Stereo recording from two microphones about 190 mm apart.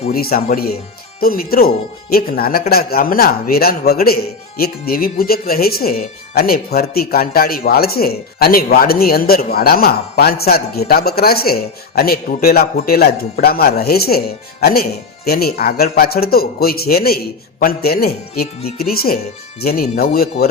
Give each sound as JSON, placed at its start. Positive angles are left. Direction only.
{"t": 0.1, "sound": "speech", "side_deg": 50}